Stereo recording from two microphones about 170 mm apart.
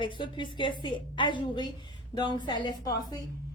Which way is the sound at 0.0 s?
30° left (ahead or behind).